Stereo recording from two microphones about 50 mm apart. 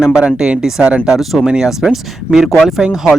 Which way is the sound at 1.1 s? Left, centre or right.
Centre.